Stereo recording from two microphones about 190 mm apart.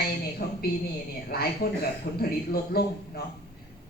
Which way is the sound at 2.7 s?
55° left (ahead or behind).